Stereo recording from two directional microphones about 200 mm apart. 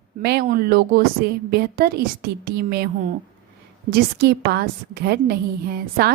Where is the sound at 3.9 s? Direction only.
55° right (ahead or behind).